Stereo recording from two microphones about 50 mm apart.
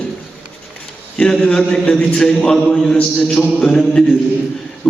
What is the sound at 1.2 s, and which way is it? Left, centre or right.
A man's voice, centre.